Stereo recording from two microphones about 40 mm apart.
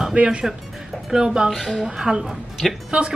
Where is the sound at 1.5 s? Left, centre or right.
Centre.